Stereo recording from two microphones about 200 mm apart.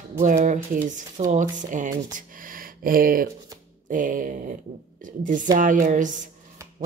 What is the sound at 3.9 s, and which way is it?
Speech, 40° right (ahead or behind).